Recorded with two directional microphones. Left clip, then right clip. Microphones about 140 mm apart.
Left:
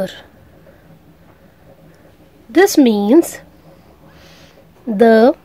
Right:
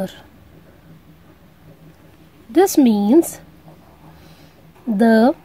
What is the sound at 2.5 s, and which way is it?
Speech, 15° right (ahead or behind).